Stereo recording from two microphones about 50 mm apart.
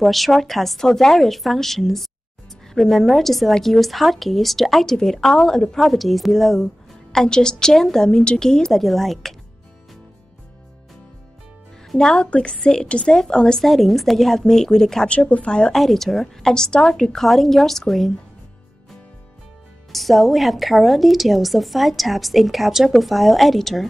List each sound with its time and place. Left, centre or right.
0.0 s a woman's voice: centre
8.2 s speech: left
8.5 s a woman's voice: centre
12.0 s a woman's voice: centre
15.0 s speech: left
15.7 s a woman's voice: centre
19.9 s a woman's voice: centre